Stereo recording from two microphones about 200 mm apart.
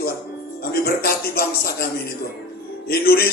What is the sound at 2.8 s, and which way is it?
Music, 50° left (ahead or behind).